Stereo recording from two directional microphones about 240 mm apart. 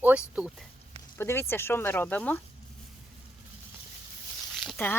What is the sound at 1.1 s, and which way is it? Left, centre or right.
Speech, centre.